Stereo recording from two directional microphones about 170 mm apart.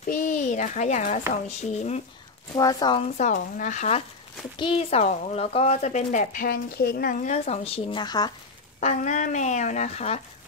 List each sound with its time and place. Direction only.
0.1 s a child's voice: 45° left (ahead or behind)
2.5 s speech: 20° left (ahead or behind)
3.0 s speech: 45° left (ahead or behind); by 8.3 s 25° left (ahead or behind)
8.7 s speech: 45° left (ahead or behind)